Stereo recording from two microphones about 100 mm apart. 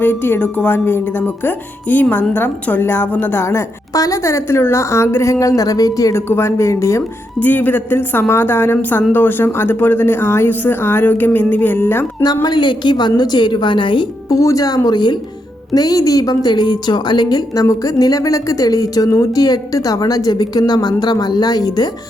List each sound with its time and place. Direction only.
0.0 s a woman's voice: 20° left (ahead or behind); by 6.2 s 35° left (ahead or behind)
6.2 s a woman's voice: 25° left (ahead or behind)
7.3 s a woman's voice: 20° left (ahead or behind)
12.2 s a woman's voice: 45° left (ahead or behind)
14.3 s a woman's voice: 35° left (ahead or behind)